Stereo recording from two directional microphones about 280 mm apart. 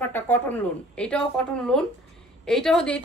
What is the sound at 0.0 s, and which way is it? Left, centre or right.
A woman's voice, centre.